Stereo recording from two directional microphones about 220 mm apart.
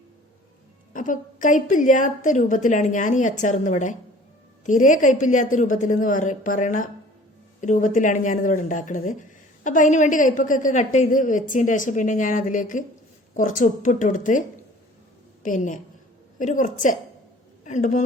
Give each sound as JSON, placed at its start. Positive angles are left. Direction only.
{"t": 0.9, "sound": "a woman's voice", "side_deg": 35}
{"t": 15.4, "sound": "a woman's voice", "side_deg": 35}